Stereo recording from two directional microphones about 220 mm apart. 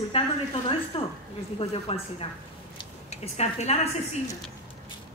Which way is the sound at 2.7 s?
30° left (ahead or behind).